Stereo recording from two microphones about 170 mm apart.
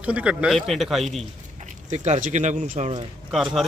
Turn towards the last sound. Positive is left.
turn(degrees=0)  # may be behind; listen again after turning